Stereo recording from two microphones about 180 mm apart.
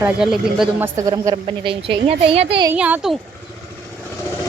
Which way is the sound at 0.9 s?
20° right (ahead or behind).